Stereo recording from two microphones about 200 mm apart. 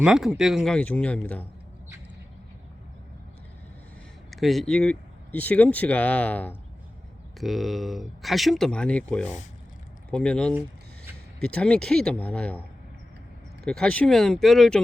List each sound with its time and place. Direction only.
0.0 s speech: 5° right (ahead or behind)
4.3 s speech: centre (ahead or behind)
13.7 s speech: 5° left (ahead or behind)